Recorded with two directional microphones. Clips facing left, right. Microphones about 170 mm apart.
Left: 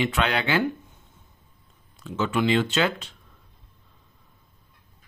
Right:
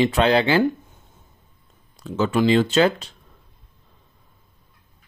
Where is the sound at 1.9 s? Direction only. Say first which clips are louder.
Right 5 dB; 35° right (ahead or behind).